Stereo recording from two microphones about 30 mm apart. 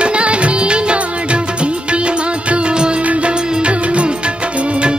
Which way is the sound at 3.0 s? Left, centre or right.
Right.